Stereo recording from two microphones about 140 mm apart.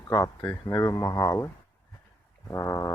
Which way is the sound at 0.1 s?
25° left (ahead or behind).